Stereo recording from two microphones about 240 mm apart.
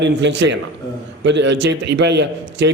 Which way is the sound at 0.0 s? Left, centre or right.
Right.